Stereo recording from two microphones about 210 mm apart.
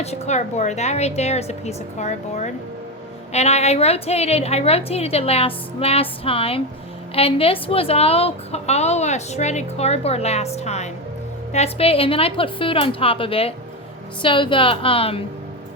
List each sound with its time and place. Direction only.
0.0 s a woman's voice: 30° left (ahead or behind)